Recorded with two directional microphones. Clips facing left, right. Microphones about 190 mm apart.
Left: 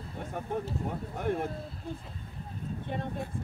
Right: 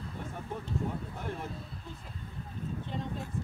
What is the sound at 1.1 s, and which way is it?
Speech, 55° left (ahead or behind).